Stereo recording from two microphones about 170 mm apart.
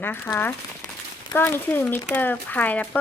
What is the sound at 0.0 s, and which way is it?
A woman's voice, 10° left (ahead or behind).